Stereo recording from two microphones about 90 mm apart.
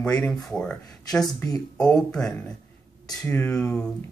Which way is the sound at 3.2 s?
20° left (ahead or behind).